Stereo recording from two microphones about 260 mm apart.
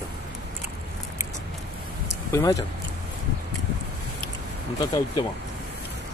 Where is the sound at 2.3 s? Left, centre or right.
Centre.